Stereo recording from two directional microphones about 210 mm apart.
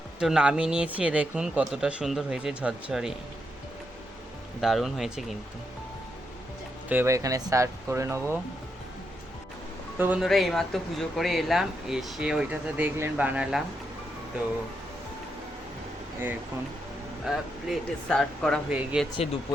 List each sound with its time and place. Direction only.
0.2 s speech: 5° right (ahead or behind)
4.6 s speech: centre (ahead or behind)
6.8 s speech: 10° right (ahead or behind)
10.0 s speech: 5° right (ahead or behind)
17.2 s speech: centre (ahead or behind)
19.1 s speech: 25° left (ahead or behind)